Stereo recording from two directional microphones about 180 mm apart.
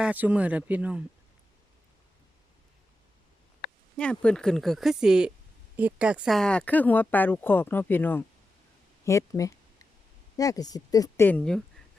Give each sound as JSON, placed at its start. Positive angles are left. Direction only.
{"t": 0.0, "sound": "speech", "side_deg": -5}
{"t": 3.9, "sound": "speech", "side_deg": 5}
{"t": 9.0, "sound": "a sound", "side_deg": 15}
{"t": 10.3, "sound": "speech", "side_deg": 20}